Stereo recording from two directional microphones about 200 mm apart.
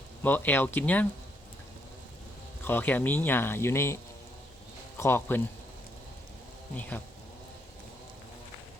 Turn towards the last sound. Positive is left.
turn(degrees=5)  # may be behind; listen again after turning